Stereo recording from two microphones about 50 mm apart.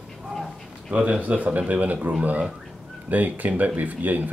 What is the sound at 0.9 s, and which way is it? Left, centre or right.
Speech, right.